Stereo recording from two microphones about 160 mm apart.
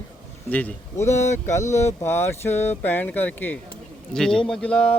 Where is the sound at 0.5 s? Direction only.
15° left (ahead or behind).